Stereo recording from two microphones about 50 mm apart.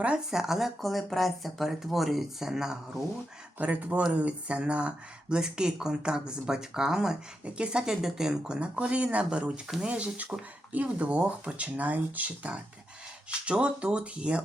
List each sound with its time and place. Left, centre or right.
0.3 s speech: centre
3.6 s speech: right
9.6 s speech: centre
9.9 s speech: right